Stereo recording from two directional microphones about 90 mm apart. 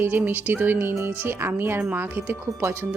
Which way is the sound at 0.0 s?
20° right (ahead or behind).